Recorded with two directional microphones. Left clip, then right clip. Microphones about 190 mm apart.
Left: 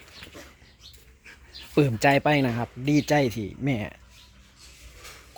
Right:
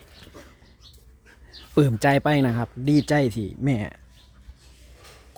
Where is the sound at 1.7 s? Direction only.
20° right (ahead or behind).